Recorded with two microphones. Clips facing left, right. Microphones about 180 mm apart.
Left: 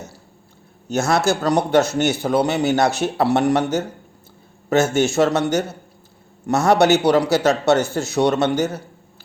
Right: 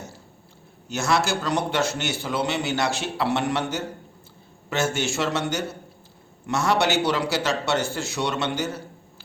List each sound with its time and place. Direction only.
0.9 s a man's voice: 40° left (ahead or behind)
6.4 s a man's voice: 40° left (ahead or behind)